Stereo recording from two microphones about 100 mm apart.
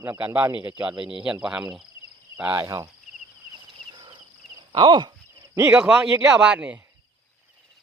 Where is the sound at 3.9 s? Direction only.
55° right (ahead or behind).